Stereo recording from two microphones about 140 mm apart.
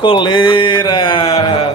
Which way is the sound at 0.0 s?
40° left (ahead or behind).